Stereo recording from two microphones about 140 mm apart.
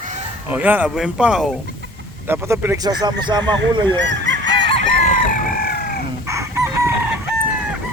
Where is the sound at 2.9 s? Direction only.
30° right (ahead or behind).